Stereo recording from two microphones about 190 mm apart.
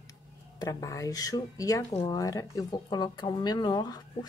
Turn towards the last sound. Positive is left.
turn(degrees=20)  # may be behind; listen again after turning